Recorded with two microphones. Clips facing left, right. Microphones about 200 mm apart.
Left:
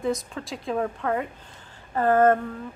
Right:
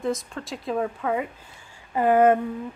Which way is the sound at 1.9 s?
15° right (ahead or behind).